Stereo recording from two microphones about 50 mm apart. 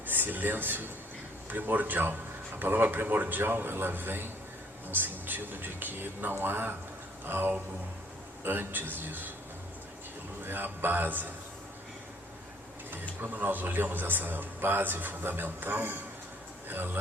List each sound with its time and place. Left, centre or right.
0.0 s a man's voice: right
10.4 s speech: right
13.3 s a man's voice: right